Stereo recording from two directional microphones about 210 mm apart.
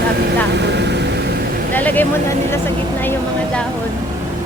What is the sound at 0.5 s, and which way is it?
Vehicle, 55° right (ahead or behind).